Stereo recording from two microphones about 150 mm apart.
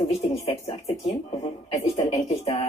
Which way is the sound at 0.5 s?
40° left (ahead or behind).